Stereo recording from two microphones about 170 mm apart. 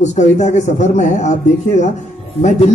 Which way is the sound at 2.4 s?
40° left (ahead or behind).